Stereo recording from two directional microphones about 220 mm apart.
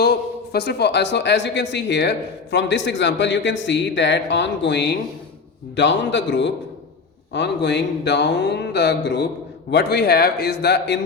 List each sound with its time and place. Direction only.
0.0 s a man's voice: 45° left (ahead or behind)